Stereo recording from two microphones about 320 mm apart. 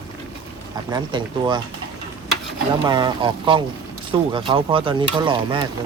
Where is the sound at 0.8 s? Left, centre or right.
Centre.